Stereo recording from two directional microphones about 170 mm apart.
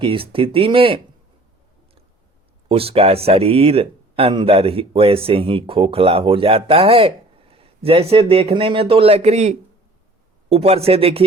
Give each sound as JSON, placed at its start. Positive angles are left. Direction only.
{"t": 0.0, "sound": "speech", "side_deg": -30}
{"t": 2.6, "sound": "speech", "side_deg": -35}